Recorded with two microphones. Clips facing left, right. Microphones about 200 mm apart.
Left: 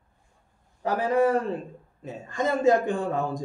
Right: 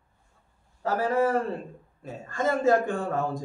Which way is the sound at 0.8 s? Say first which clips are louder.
Left 2 dB; 15° left (ahead or behind).